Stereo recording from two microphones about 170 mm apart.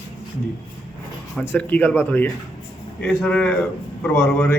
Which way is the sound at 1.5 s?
10° left (ahead or behind).